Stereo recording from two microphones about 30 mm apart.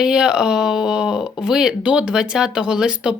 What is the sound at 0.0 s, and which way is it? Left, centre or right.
Speech, right.